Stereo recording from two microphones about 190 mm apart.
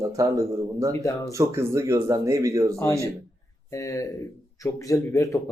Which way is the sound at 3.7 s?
15° left (ahead or behind).